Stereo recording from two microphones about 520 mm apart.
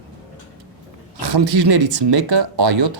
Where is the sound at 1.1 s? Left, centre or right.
Right.